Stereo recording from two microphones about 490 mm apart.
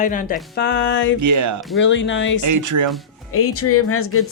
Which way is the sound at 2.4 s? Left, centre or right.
Right.